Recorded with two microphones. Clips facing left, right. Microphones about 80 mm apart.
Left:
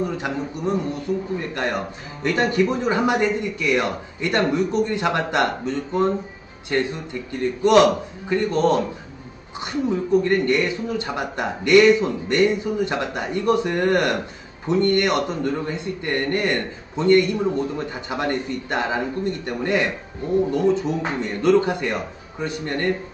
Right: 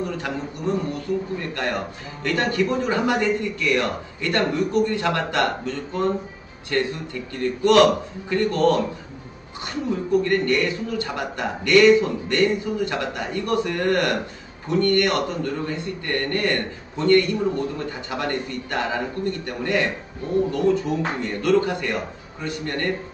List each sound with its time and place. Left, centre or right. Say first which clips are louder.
0.0 s a man's voice: left 2 dB; centre
9.8 s a man's voice: left 2 dB; left